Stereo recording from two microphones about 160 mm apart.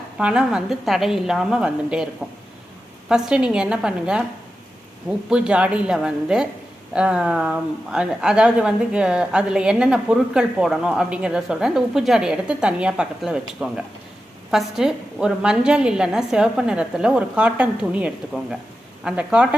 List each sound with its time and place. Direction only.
0.2 s speech: 5° right (ahead or behind)
3.1 s speech: 5° right (ahead or behind)
5.3 s a woman's voice: 5° right (ahead or behind)